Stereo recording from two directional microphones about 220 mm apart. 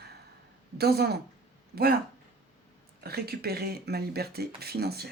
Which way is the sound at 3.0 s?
45° right (ahead or behind).